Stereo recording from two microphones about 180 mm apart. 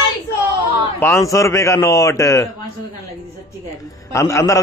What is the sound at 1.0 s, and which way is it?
A man's voice, 15° left (ahead or behind).